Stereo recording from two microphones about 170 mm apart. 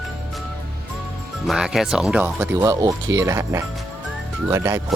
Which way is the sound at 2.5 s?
20° right (ahead or behind).